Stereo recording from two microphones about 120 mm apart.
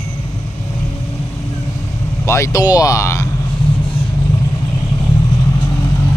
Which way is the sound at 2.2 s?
25° left (ahead or behind).